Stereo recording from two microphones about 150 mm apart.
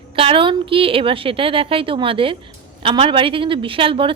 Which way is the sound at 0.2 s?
35° right (ahead or behind).